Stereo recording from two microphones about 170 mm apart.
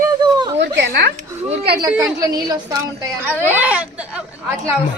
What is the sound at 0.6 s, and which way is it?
Speech, 85° right.